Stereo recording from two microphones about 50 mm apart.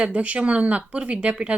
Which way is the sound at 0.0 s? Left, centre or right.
Right.